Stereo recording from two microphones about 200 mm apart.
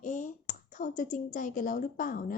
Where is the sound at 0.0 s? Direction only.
40° left (ahead or behind).